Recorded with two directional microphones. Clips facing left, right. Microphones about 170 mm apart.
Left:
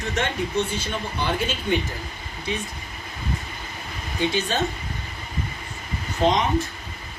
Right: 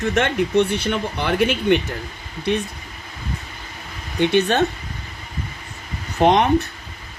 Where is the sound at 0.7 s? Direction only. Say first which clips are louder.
Right 5 dB; 70° right (ahead or behind).